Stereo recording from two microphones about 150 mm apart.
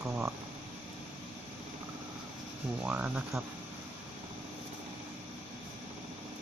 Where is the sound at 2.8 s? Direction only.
10° right (ahead or behind).